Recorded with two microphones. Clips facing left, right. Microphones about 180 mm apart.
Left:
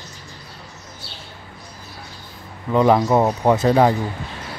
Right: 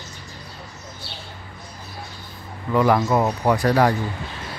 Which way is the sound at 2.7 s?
20° left (ahead or behind).